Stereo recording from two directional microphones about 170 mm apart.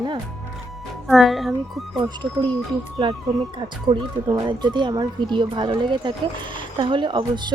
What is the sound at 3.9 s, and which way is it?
Speech, 25° right (ahead or behind).